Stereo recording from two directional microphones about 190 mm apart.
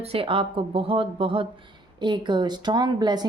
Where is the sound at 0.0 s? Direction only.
30° right (ahead or behind).